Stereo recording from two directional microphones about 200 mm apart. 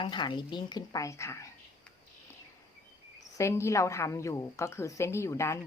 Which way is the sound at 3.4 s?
15° left (ahead or behind).